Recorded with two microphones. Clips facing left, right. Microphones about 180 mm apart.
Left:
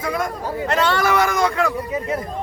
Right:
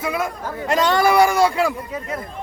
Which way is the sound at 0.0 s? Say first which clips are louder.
Even; 5° right (ahead or behind).